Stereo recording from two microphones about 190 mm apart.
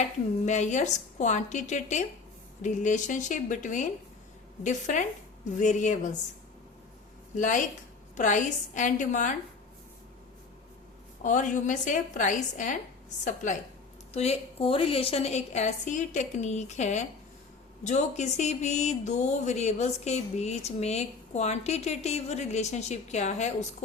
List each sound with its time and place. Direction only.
0.0 s a woman's voice: 35° left (ahead or behind)
7.3 s a woman's voice: 40° left (ahead or behind)
11.2 s a woman's voice: 40° left (ahead or behind)